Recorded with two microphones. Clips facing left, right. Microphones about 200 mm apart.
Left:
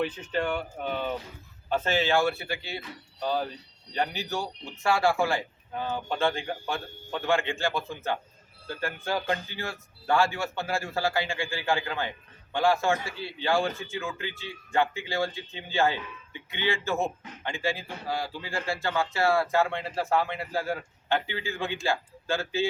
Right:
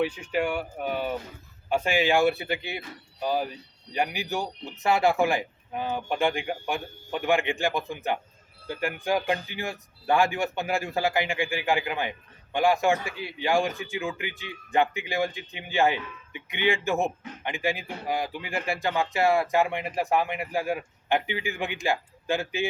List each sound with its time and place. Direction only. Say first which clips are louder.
0.0 s a man's voice: right 2 dB; 10° right (ahead or behind)